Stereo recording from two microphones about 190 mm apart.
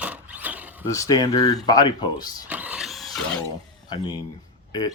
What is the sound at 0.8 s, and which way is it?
Speech, 15° left (ahead or behind).